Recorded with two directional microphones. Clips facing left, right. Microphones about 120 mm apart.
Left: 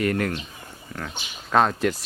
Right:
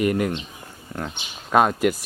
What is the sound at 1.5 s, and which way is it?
Speech, 10° right (ahead or behind).